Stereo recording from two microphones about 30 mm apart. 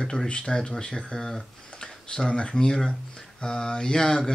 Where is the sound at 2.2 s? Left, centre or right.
Left.